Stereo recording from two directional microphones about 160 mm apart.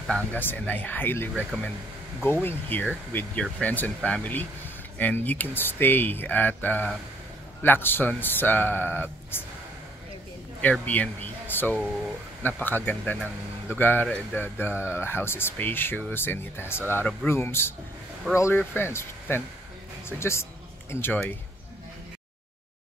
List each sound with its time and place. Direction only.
0.0 s speech: 5° left (ahead or behind)
2.4 s speech: 10° left (ahead or behind)
10.6 s speech: 10° left (ahead or behind)